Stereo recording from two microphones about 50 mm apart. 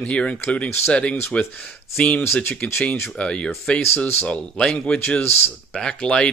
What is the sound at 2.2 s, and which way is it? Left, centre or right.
Speech, left.